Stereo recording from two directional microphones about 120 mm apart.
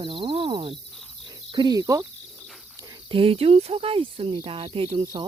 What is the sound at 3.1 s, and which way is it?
Speech, 50° right (ahead or behind).